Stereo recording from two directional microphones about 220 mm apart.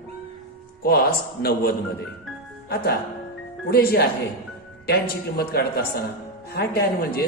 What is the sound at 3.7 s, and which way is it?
A woman's voice, 45° left (ahead or behind).